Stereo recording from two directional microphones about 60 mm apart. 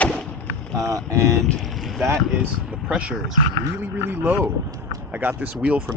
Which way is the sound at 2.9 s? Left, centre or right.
Centre.